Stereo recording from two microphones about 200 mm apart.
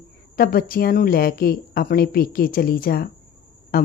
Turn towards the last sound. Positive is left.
turn(degrees=45)  # may be behind; listen again after turning